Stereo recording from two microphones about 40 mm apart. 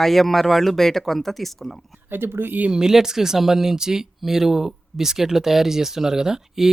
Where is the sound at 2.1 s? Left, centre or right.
Right.